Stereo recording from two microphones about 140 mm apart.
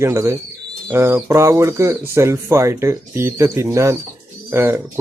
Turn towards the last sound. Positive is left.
turn(degrees=-20)  # may be behind; listen again after turning